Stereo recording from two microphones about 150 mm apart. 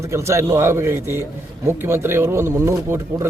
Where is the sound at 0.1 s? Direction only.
20° right (ahead or behind).